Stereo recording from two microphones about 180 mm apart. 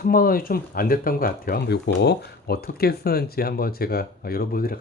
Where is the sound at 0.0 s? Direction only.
55° left (ahead or behind).